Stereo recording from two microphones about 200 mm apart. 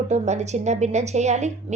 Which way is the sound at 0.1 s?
35° right (ahead or behind).